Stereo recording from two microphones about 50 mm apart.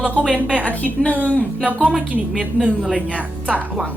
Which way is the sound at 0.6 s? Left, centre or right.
Left.